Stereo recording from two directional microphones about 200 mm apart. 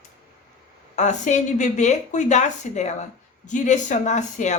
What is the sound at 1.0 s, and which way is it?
Speech, 35° left (ahead or behind).